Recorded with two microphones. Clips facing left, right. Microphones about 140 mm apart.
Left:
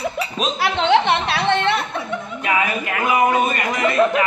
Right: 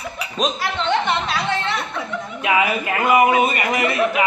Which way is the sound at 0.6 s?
75° left (ahead or behind).